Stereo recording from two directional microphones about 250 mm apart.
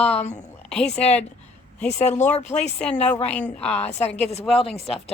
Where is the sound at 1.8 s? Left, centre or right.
Left.